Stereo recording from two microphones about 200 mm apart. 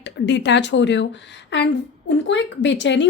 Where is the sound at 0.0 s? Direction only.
60° left (ahead or behind).